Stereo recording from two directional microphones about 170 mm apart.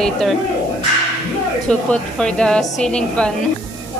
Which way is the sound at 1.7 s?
5° left (ahead or behind).